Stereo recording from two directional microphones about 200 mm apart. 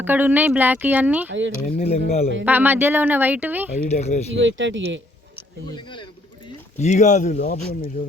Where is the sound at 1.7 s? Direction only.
30° left (ahead or behind).